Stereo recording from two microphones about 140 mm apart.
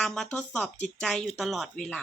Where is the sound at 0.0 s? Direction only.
5° left (ahead or behind).